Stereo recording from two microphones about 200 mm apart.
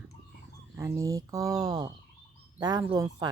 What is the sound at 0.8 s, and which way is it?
Speech, 15° right (ahead or behind).